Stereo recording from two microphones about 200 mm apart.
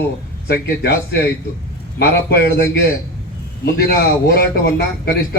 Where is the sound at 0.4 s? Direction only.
50° left (ahead or behind).